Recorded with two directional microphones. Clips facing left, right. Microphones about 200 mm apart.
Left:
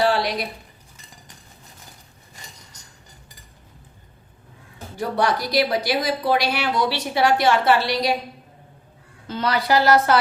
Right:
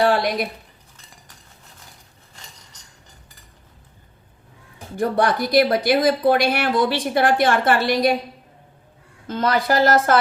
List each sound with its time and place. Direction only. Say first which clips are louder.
0.0 s speech: right 2 dB; 50° right (ahead or behind)
4.9 s speech: right 3 dB; 50° right (ahead or behind)
9.2 s speech: right 3 dB; 50° right (ahead or behind)